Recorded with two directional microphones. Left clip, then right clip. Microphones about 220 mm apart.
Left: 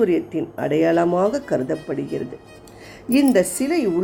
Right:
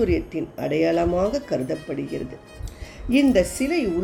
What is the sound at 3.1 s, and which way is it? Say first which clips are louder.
Speech: left 2 dB; 5° left (ahead or behind).